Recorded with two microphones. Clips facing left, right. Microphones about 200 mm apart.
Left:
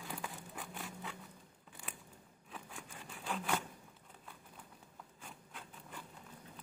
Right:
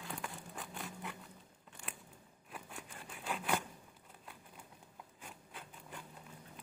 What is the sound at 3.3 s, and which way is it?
Zipper, 10° right (ahead or behind).